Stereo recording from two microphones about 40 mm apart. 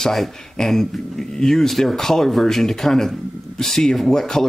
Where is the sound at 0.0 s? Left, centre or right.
Centre.